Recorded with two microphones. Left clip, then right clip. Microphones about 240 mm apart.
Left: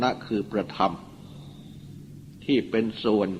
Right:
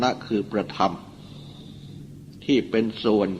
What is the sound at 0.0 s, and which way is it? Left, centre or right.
A man's voice, left.